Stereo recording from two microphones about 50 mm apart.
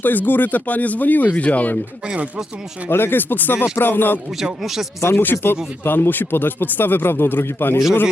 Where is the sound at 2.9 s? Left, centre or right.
Left.